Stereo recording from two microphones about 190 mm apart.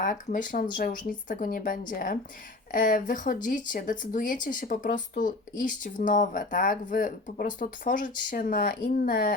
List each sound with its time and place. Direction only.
0.0 s speech: 45° left (ahead or behind)